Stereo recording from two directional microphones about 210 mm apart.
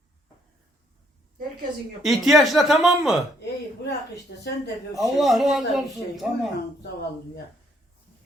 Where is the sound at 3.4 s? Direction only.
55° left (ahead or behind).